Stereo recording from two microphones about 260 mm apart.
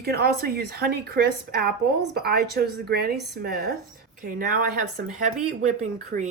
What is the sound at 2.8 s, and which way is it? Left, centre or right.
Speech, right.